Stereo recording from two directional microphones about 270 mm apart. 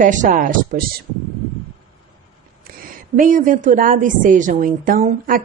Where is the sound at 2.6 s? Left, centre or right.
Right.